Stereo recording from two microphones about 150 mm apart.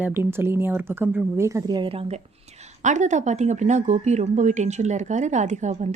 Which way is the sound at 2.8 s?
55° right (ahead or behind).